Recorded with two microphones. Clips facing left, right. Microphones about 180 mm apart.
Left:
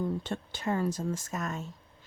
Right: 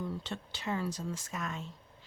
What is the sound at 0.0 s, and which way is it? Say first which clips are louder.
Speech: left 6 dB; 50° left (ahead or behind).